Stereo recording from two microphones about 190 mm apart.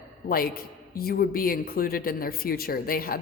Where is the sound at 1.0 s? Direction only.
50° left (ahead or behind).